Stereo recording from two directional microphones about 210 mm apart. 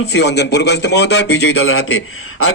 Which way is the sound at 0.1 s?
55° left (ahead or behind).